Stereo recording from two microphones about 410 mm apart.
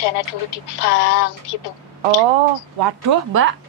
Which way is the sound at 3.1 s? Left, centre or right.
Right.